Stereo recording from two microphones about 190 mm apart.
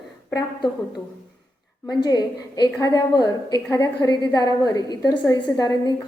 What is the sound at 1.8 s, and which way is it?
A woman's voice, 20° left (ahead or behind).